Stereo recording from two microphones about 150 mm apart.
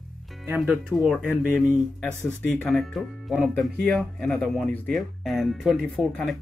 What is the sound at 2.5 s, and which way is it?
Speech, 5° left (ahead or behind).